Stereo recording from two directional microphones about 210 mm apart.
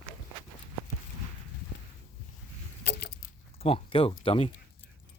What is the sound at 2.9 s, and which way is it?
Keys jangling, 50° left (ahead or behind).